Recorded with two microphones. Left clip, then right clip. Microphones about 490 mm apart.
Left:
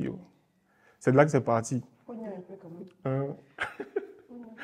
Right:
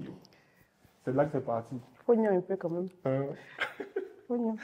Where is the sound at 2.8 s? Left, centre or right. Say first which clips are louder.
Right 1 dB; left.